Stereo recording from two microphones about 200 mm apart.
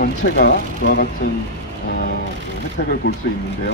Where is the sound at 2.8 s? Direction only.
50° left (ahead or behind).